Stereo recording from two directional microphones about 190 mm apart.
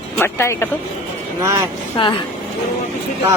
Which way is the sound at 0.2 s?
10° left (ahead or behind).